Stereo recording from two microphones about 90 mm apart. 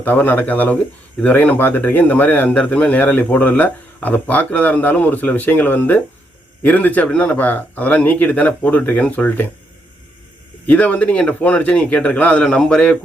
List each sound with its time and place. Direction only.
0.0 s speech: 20° left (ahead or behind)
10.7 s speech: 15° left (ahead or behind)